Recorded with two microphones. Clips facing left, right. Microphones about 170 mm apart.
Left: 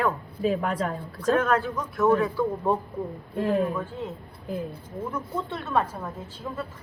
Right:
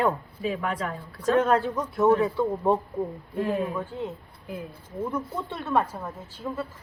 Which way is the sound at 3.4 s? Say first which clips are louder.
Left 4 dB; centre (ahead or behind).